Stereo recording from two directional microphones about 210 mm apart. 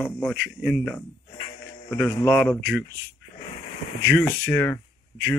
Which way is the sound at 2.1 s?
15° left (ahead or behind).